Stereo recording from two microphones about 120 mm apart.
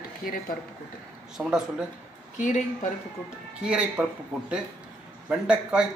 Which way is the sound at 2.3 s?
90° left.